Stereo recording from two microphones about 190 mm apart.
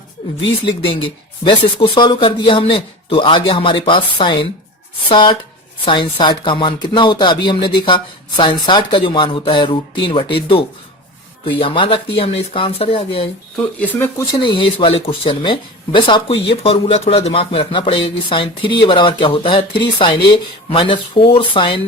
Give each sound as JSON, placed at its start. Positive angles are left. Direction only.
{"t": 0.6, "sound": "speech", "side_deg": 25}
{"t": 11.4, "sound": "speech", "side_deg": 30}
{"t": 13.6, "sound": "speech", "side_deg": 10}
{"t": 14.3, "sound": "speech", "side_deg": 25}